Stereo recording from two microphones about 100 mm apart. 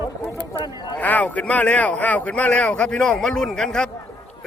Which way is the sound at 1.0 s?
15° left (ahead or behind).